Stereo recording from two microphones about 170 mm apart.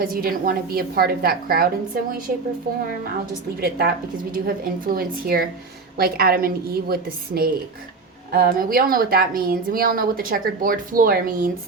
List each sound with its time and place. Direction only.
0.0 s a woman's voice: 60° right (ahead or behind)
3.6 s a woman's voice: 65° right (ahead or behind)